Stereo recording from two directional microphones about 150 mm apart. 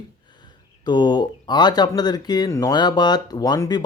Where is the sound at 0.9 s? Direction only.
30° left (ahead or behind).